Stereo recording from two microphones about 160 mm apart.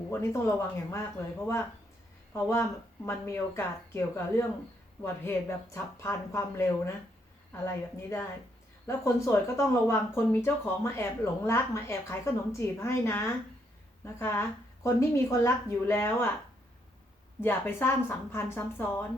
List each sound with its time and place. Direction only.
0.1 s speech: 15° left (ahead or behind)
2.3 s speech: 15° left (ahead or behind)
17.4 s speech: 15° left (ahead or behind)